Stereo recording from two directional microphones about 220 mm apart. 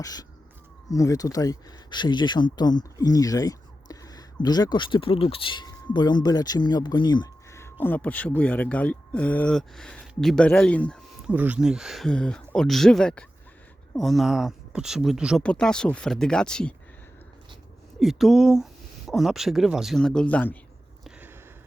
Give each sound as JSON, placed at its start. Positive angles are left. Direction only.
{"t": 0.0, "sound": "speech", "side_deg": 15}
{"t": 11.3, "sound": "speech", "side_deg": -5}
{"t": 18.0, "sound": "speech", "side_deg": 0}
{"t": 21.0, "sound": "a sound", "side_deg": -10}